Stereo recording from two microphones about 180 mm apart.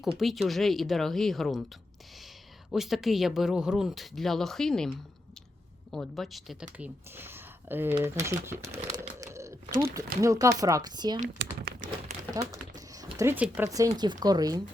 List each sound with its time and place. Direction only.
0.2 s speech: centre (ahead or behind)
2.7 s speech: centre (ahead or behind); by 11.2 s 25° right (ahead or behind)
11.4 s speech: 65° right (ahead or behind)
12.4 s speech: 20° right (ahead or behind)